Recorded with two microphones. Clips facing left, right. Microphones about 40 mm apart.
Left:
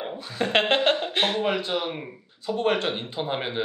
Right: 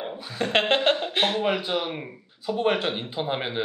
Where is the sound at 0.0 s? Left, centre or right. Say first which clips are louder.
Left 1 dB; centre.